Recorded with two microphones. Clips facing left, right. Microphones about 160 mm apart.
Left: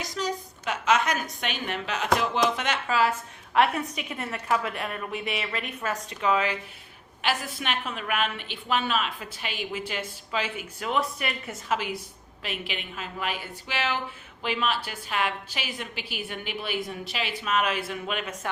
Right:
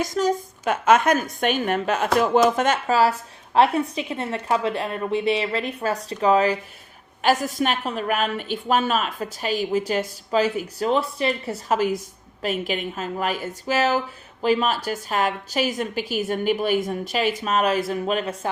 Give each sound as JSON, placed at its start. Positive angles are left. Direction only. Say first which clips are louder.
{"t": 0.0, "sound": "a woman's voice", "louder": "right 9 dB", "side_deg": -50}